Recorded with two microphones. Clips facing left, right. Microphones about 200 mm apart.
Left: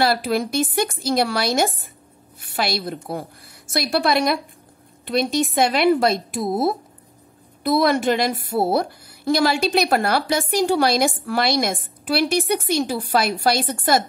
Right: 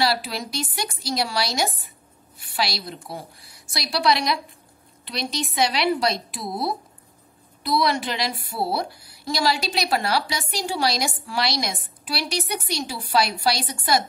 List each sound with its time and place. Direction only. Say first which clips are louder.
0.0 s a woman's voice: left 5 dB; 50° left (ahead or behind)